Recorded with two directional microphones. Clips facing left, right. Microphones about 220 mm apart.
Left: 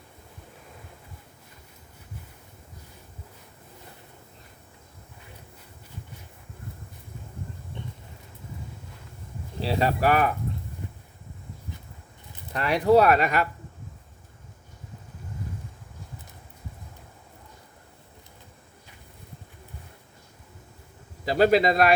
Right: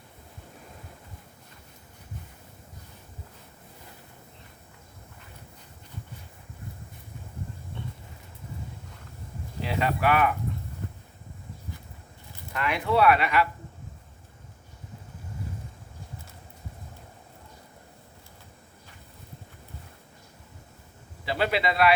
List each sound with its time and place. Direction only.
7.8 s vehicle: 15° left (ahead or behind)
9.6 s speech: 35° left (ahead or behind)
12.5 s speech: 35° left (ahead or behind)
21.2 s speech: 40° left (ahead or behind)